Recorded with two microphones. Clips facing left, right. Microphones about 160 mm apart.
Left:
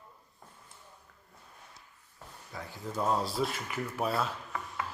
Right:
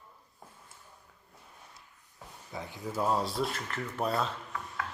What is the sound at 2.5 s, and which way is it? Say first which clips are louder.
Speech: right 2 dB; 20° right (ahead or behind).